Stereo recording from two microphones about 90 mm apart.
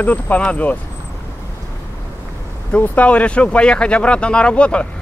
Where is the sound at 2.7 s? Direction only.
15° left (ahead or behind).